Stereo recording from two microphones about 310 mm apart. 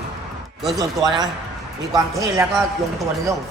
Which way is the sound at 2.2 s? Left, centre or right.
Centre.